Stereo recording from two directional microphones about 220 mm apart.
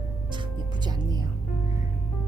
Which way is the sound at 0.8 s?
20° right (ahead or behind).